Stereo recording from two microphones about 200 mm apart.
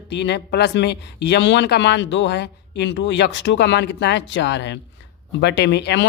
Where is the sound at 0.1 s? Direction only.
60° left (ahead or behind).